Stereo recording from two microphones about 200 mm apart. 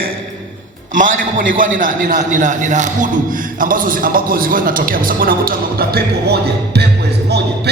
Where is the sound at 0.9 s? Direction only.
40° right (ahead or behind).